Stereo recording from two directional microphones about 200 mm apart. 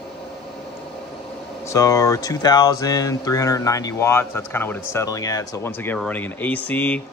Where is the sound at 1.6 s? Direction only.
15° left (ahead or behind).